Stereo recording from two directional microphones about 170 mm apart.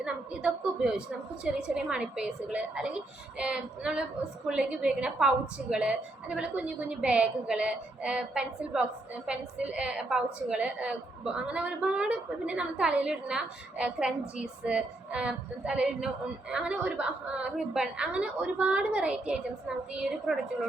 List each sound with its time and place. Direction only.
0.0 s a woman's voice: 5° right (ahead or behind)